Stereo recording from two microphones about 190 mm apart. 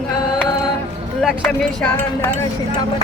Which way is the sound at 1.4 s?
10° left (ahead or behind).